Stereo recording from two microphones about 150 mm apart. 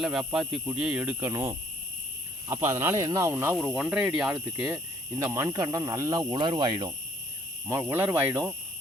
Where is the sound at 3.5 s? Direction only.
10° right (ahead or behind); by 6.9 s 30° right (ahead or behind).